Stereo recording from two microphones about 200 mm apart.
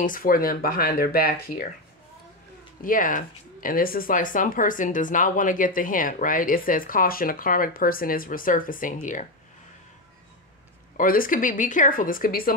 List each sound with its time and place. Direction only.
0.0 s speech: 45° left (ahead or behind)
2.8 s speech: 45° left (ahead or behind)
11.0 s speech: 45° left (ahead or behind)